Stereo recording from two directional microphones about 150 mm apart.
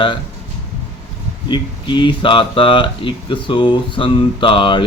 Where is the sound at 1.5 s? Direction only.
30° left (ahead or behind).